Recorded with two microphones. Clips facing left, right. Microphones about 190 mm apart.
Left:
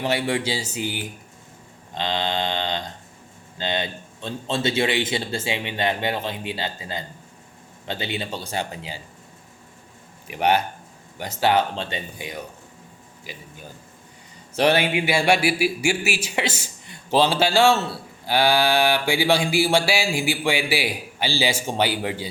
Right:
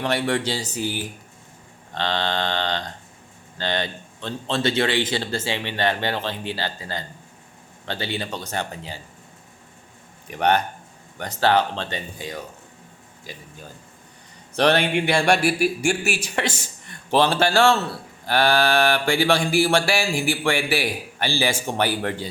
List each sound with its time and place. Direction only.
0.0 s speech: 10° left (ahead or behind)
10.2 s speech: 10° left (ahead or behind)
14.5 s speech: 10° left (ahead or behind)